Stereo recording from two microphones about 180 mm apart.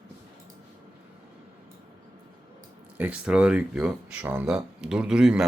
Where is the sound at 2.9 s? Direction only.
5° right (ahead or behind).